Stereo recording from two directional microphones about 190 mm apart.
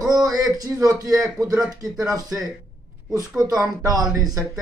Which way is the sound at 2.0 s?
15° right (ahead or behind).